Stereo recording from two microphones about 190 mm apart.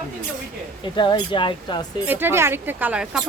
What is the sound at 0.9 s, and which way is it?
Speech, 25° left (ahead or behind).